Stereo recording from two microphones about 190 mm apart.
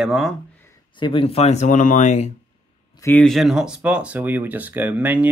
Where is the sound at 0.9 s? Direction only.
25° left (ahead or behind).